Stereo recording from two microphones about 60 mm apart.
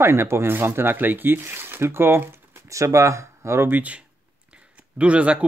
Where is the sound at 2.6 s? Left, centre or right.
Right.